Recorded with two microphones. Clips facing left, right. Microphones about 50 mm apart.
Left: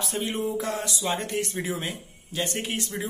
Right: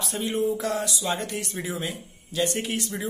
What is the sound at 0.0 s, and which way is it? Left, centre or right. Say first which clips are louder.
Speech: right 2 dB; left.